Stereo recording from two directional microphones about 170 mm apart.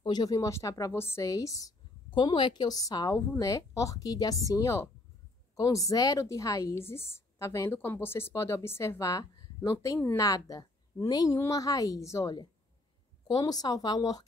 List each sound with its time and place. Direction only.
0.0 s a woman's voice: 25° left (ahead or behind)